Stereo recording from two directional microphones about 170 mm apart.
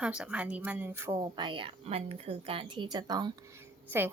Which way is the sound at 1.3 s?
30° right (ahead or behind).